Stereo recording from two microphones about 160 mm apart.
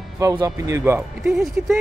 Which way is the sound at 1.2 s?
Centre (ahead or behind).